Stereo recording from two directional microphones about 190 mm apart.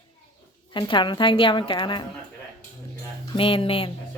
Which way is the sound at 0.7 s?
25° left (ahead or behind).